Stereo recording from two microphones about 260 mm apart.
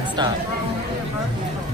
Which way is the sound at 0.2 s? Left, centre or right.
Centre.